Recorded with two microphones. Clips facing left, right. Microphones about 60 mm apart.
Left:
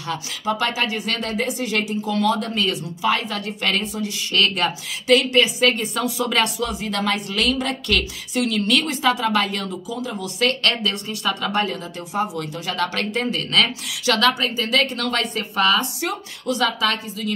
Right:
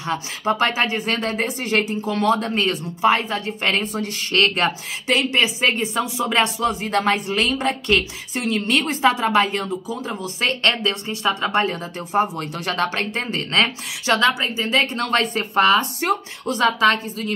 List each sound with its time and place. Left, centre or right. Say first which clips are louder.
0.0 s speech: right 2 dB; right